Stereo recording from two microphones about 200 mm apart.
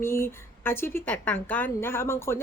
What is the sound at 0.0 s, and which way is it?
A woman's voice, 10° left (ahead or behind).